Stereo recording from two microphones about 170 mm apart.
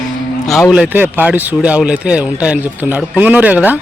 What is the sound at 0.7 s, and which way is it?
Speech, 10° right (ahead or behind).